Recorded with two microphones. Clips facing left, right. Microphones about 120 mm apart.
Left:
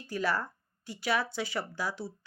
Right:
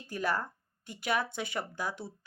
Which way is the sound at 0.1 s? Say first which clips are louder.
Left 1 dB; 50° right (ahead or behind).